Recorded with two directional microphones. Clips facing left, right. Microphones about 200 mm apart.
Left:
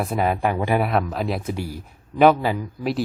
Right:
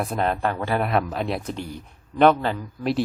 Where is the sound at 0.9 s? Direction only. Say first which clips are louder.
Left 1 dB; centre (ahead or behind).